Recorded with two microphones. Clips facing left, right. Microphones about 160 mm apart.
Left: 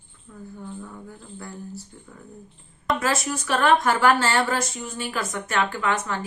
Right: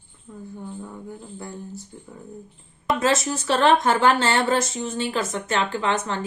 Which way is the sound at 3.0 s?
25° right (ahead or behind).